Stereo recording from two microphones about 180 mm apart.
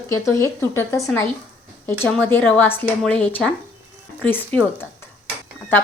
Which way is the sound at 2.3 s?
10° left (ahead or behind).